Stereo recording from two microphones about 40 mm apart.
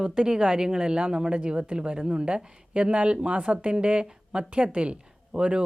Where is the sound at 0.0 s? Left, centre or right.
Right.